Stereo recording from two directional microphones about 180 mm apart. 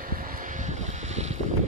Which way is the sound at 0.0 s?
50° right (ahead or behind).